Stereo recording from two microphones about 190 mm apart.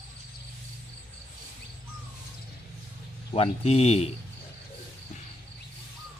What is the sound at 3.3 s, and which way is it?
Speech, 35° left (ahead or behind).